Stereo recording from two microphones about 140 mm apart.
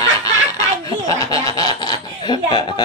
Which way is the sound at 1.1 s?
25° left (ahead or behind).